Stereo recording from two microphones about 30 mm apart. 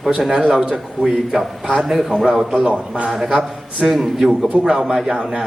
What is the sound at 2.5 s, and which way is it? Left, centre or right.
Speech, right.